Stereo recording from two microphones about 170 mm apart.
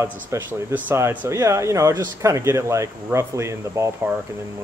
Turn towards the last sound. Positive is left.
turn(degrees=-15)  # may be behind; listen again after turning